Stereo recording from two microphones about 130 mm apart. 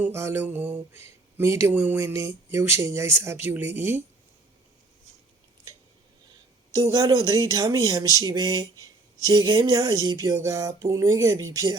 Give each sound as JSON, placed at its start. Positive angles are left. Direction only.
{"t": 0.0, "sound": "mantra", "side_deg": -20}
{"t": 1.4, "sound": "speech", "side_deg": -20}
{"t": 3.4, "sound": "mantra", "side_deg": -15}
{"t": 6.9, "sound": "speech", "side_deg": -30}